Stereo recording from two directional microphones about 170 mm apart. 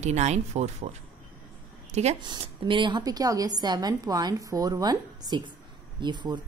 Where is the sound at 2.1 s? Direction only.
30° right (ahead or behind).